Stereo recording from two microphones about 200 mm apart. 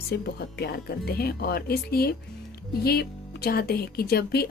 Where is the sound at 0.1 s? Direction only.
55° left (ahead or behind).